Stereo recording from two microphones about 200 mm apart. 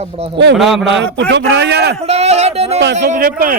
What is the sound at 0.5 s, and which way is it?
Speech, centre (ahead or behind).